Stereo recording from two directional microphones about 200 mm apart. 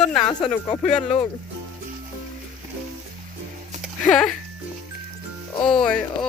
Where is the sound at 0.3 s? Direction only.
20° left (ahead or behind).